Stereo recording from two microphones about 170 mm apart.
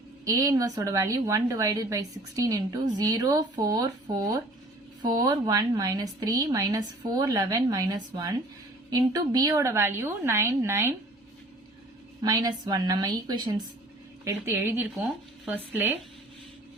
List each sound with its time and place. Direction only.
0.3 s a woman's voice: 20° right (ahead or behind)
12.2 s a woman's voice: 20° right (ahead or behind)